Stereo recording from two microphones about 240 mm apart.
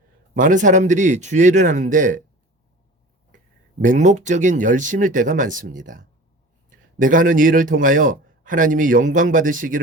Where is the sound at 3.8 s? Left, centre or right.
Right.